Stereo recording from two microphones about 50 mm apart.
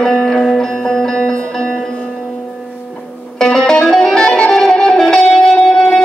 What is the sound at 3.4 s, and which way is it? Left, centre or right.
Music, centre.